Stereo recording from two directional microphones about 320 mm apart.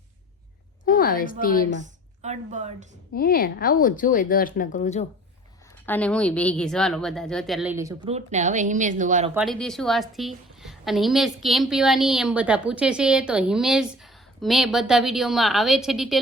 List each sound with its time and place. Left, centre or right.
0.9 s a woman's voice: left
2.2 s a woman's voice: right
3.2 s speech: left
5.8 s a woman's voice: centre; by 9.3 s right
9.3 s a woman's voice: centre